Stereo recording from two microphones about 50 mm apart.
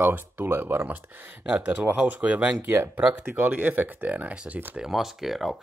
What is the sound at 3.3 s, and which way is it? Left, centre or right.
Speech, right.